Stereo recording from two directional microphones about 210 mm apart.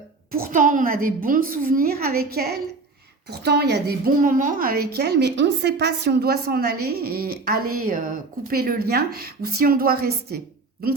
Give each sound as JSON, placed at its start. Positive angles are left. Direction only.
{"t": 0.3, "sound": "a woman's voice", "side_deg": -45}